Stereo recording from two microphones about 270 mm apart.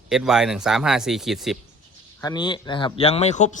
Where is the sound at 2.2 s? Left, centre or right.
Centre.